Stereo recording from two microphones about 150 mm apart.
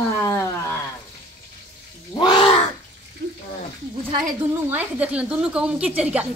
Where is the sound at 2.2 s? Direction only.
35° left (ahead or behind).